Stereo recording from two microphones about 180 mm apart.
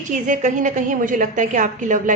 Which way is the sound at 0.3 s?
45° right (ahead or behind).